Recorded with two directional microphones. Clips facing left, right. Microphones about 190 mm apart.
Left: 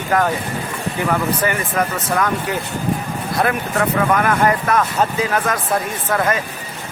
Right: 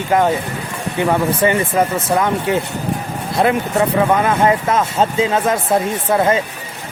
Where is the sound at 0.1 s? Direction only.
25° right (ahead or behind).